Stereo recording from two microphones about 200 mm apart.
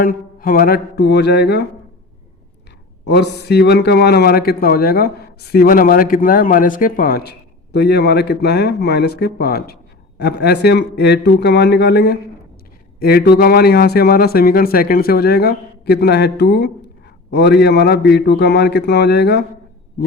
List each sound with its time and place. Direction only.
0.0 s a man's voice: 45° left (ahead or behind)
3.1 s a man's voice: 55° left (ahead or behind)